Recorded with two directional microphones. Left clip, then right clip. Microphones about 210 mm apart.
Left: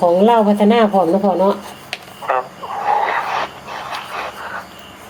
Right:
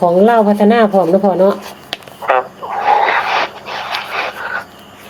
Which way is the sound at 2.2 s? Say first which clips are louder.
Right 5 dB; 20° right (ahead or behind).